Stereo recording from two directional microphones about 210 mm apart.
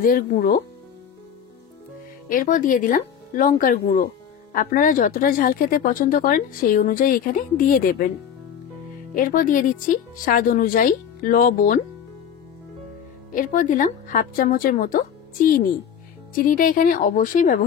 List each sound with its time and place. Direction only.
0.0 s speech: 45° left (ahead or behind)
2.2 s a woman's voice: 40° left (ahead or behind)
9.1 s a woman's voice: 40° left (ahead or behind)
13.3 s a woman's voice: 40° left (ahead or behind)